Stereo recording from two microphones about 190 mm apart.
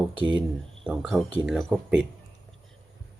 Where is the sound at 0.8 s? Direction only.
5° right (ahead or behind).